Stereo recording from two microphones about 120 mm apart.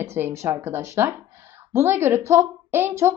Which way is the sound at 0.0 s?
20° right (ahead or behind).